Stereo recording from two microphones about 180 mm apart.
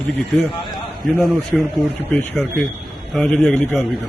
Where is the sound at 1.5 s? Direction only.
Centre (ahead or behind).